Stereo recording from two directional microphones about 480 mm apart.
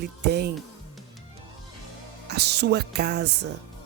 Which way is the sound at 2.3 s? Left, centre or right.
Centre.